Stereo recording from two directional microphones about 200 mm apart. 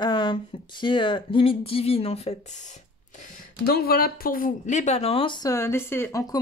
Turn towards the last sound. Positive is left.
turn(degrees=15)  # may be behind; listen again after turning